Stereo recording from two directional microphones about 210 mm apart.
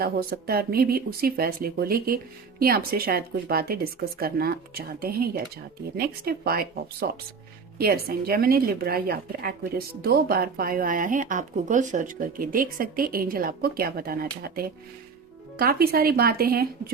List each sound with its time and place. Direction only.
0.0 s a woman's voice: 45° right (ahead or behind)